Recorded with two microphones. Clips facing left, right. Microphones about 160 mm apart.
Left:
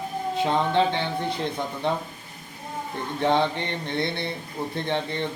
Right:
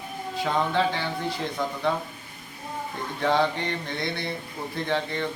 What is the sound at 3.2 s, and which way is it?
A man's voice, 20° left (ahead or behind).